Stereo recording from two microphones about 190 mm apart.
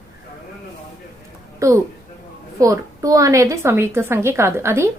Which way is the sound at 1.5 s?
15° right (ahead or behind).